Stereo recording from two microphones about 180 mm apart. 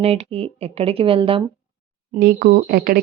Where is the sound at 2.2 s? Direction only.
55° right (ahead or behind).